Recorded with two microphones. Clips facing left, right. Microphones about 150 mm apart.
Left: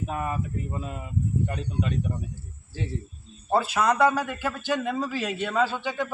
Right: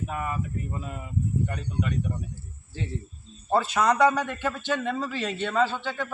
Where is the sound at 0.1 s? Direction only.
25° left (ahead or behind).